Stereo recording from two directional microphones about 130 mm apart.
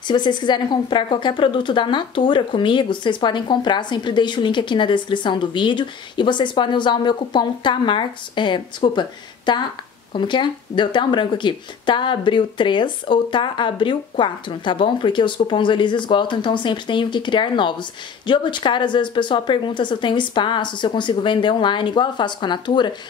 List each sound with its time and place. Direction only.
0.1 s speech: 35° left (ahead or behind)